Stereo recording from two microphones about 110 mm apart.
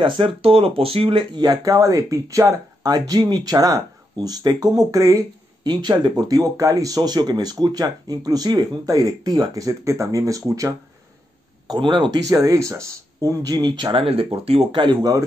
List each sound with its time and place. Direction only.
0.0 s speech: 50° right (ahead or behind); by 5.2 s 30° right (ahead or behind)
5.6 s speech: 40° right (ahead or behind)
11.6 s speech: 45° right (ahead or behind)
12.3 s speech: 30° right (ahead or behind)
14.0 s speech: 60° right (ahead or behind)
14.8 s speech: 40° right (ahead or behind)